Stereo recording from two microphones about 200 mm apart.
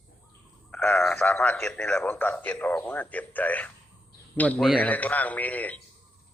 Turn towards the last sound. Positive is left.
turn(degrees=10)  # may be behind; listen again after turning